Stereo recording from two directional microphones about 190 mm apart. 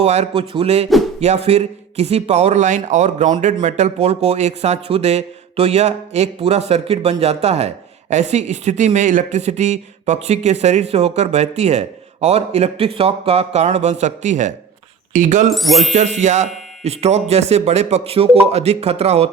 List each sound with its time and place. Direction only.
0.0 s speech: 35° right (ahead or behind)
15.5 s music: centre (ahead or behind)
15.9 s speech: 40° right (ahead or behind)